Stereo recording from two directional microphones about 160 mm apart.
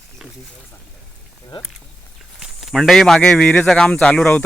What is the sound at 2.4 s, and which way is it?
A man's voice, centre (ahead or behind).